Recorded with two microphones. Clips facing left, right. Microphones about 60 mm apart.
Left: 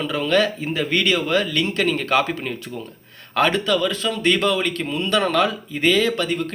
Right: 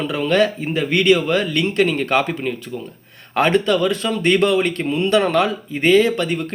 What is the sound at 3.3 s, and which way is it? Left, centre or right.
Speech, right.